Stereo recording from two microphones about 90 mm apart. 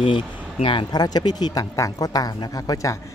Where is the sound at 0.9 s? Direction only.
50° left (ahead or behind).